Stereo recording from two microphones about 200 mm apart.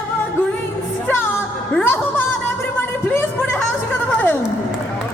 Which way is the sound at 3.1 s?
10° left (ahead or behind).